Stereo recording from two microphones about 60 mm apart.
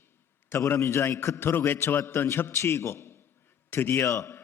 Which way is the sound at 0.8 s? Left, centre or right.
Left.